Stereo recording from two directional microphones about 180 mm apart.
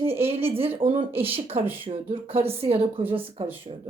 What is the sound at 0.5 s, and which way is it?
A woman's voice, 30° right (ahead or behind).